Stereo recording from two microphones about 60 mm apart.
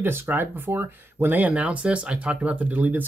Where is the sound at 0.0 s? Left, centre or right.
Right.